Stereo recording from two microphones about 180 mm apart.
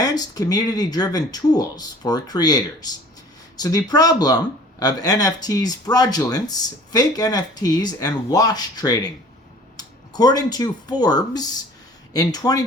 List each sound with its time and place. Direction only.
0.0 s speech: 20° left (ahead or behind)